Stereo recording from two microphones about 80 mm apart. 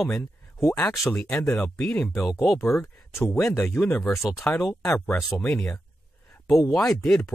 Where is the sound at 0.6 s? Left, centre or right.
Left.